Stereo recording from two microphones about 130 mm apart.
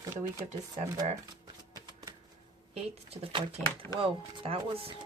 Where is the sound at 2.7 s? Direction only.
50° right (ahead or behind).